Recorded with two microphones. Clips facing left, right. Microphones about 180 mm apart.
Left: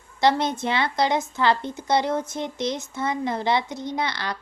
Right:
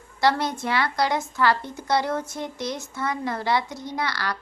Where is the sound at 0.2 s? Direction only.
20° left (ahead or behind).